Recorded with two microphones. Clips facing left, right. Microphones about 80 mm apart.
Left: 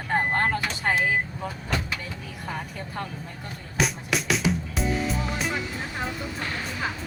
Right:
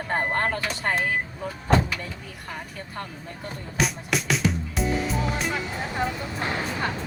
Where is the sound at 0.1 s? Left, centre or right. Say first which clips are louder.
Left 2 dB; centre.